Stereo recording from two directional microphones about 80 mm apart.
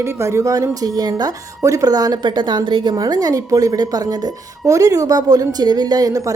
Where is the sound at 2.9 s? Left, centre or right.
Right.